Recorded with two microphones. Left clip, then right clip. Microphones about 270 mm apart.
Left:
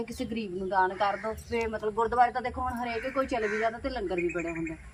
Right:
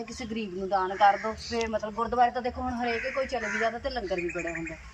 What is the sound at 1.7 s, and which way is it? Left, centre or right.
Speech, centre.